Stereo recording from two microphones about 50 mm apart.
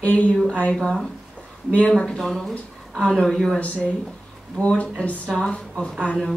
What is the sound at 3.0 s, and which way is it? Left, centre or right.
Speech, centre.